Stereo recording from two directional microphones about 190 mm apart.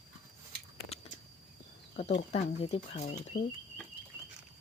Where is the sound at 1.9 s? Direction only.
35° left (ahead or behind).